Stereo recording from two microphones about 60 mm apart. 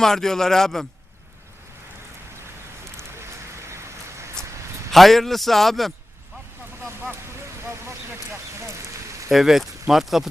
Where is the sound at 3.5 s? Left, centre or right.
Right.